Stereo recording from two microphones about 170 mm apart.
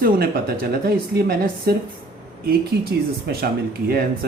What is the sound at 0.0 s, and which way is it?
Speech, 65° right (ahead or behind).